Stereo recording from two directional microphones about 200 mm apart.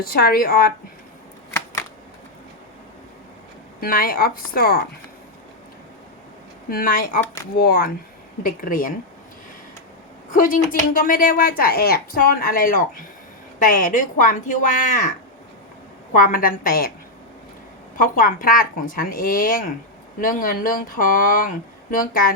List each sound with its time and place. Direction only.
0.1 s speech: 50° left (ahead or behind)
3.8 s speech: 45° left (ahead or behind)
6.7 s speech: 45° left (ahead or behind)
10.3 s speech: 45° left (ahead or behind)
16.1 s speech: 45° left (ahead or behind)
17.9 s speech: 45° left (ahead or behind)